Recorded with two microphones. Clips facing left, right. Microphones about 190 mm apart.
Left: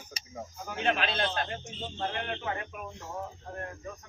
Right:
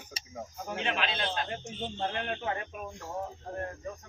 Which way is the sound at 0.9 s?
45° left (ahead or behind).